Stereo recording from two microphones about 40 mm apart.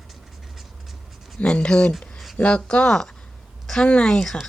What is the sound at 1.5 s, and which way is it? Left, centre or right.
Speech, centre.